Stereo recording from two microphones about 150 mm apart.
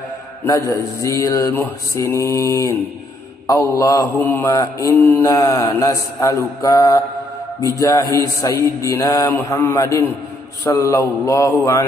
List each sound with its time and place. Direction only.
0.5 s mantra: 20° left (ahead or behind)